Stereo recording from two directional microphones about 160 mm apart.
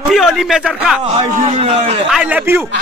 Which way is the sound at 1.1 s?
40° right (ahead or behind).